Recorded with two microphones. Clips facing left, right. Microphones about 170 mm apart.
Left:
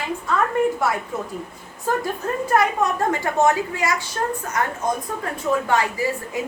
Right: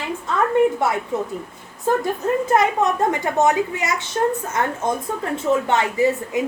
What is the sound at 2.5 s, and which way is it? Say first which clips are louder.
A woman's voice: even; 20° right (ahead or behind).